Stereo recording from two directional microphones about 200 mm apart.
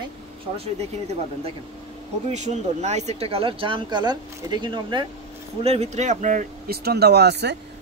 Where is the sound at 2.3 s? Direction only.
35° right (ahead or behind).